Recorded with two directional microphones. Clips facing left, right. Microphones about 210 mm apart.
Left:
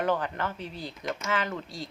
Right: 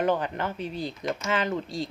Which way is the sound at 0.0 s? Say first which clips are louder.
Right 3 dB; 20° right (ahead or behind).